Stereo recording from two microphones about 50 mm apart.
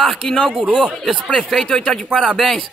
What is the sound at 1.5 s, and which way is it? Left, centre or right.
Speech, centre.